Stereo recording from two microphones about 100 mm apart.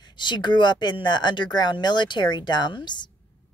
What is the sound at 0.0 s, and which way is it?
A woman's voice, 50° left (ahead or behind).